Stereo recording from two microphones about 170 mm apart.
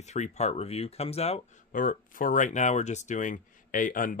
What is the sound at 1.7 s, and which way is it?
Speech, 50° left (ahead or behind).